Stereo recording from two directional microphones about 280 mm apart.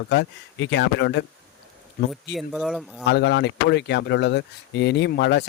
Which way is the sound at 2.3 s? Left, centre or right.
Centre.